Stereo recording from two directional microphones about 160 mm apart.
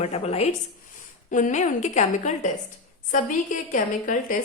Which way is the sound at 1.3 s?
50° left (ahead or behind).